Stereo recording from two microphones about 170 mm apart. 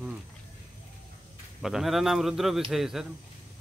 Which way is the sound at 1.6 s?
Centre (ahead or behind).